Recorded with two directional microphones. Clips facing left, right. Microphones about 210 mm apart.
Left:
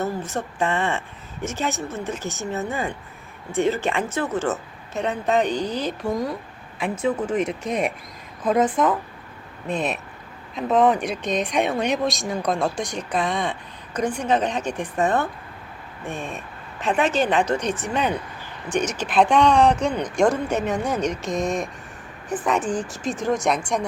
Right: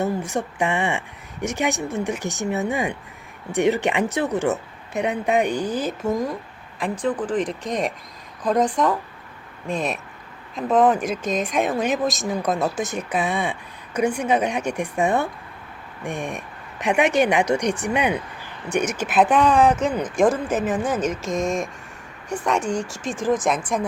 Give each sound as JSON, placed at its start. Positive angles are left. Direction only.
{"t": 0.0, "sound": "speech", "side_deg": -15}
{"t": 6.1, "sound": "speech", "side_deg": 0}
{"t": 7.0, "sound": "speech", "side_deg": 10}